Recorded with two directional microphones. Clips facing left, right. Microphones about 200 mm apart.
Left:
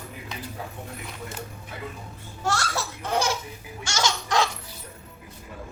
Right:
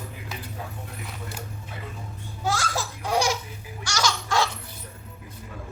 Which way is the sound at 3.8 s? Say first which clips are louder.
Even; 25° left (ahead or behind).